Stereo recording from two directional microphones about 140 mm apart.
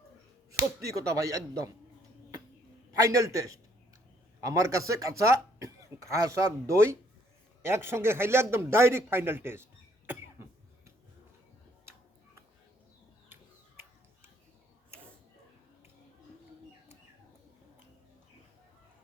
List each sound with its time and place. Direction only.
0.5 s speech: 20° right (ahead or behind)
2.9 s speech: 25° right (ahead or behind)